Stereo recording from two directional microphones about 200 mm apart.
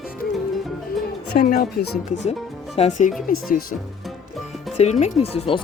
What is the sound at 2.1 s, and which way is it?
Speech, 35° left (ahead or behind).